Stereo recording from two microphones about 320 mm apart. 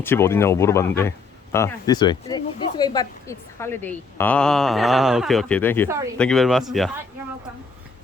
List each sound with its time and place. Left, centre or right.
0.0 s speech: centre